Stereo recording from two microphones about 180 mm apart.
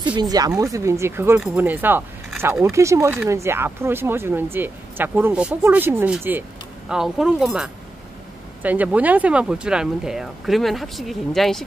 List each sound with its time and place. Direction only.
0.0 s speech: 25° right (ahead or behind); by 2.7 s 5° right (ahead or behind)
2.7 s speech: 15° right (ahead or behind); by 11.6 s centre (ahead or behind)